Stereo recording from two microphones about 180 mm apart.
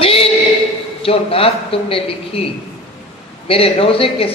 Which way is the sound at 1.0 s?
30° left (ahead or behind).